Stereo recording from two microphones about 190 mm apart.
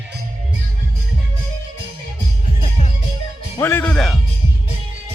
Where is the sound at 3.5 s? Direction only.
10° left (ahead or behind).